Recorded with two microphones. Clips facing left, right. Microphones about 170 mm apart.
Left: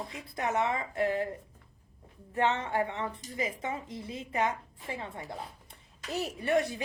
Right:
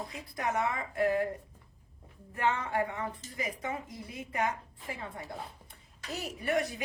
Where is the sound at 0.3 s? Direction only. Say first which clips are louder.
Left 2 dB; 25° left (ahead or behind).